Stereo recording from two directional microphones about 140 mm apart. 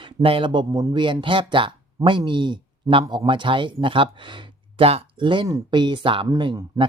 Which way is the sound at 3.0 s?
25° right (ahead or behind).